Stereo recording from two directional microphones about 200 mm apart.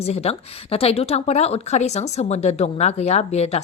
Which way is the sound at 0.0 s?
30° left (ahead or behind).